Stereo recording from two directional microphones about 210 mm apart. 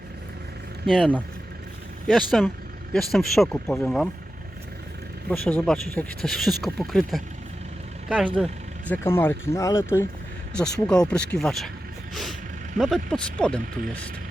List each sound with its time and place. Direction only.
0.9 s speech: centre (ahead or behind)
2.3 s speech: centre (ahead or behind)
5.3 s speech: 10° left (ahead or behind)
8.4 s speech: centre (ahead or behind)
8.9 s speech: 10° left (ahead or behind)